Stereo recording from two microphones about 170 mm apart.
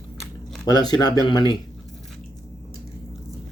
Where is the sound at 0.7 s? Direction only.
25° left (ahead or behind).